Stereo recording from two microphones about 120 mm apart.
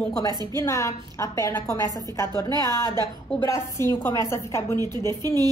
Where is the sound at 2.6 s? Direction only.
35° right (ahead or behind).